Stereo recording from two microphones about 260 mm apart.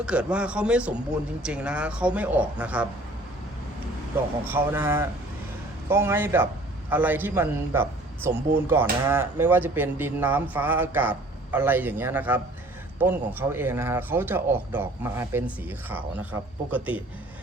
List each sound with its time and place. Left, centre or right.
0.0 s a man's voice: centre
4.4 s a man's voice: centre